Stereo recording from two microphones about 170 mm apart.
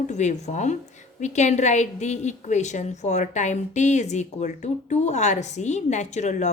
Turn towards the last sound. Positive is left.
turn(degrees=45)  # may be behind; listen again after turning